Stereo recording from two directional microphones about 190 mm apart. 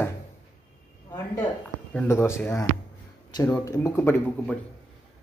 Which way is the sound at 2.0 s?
15° left (ahead or behind).